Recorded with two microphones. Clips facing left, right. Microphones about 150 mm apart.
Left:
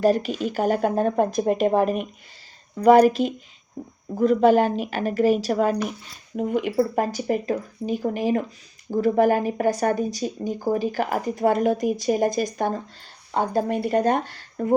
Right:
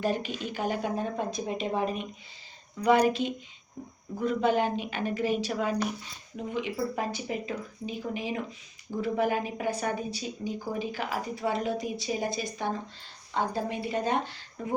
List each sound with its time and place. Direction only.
0.0 s a woman's voice: 40° left (ahead or behind)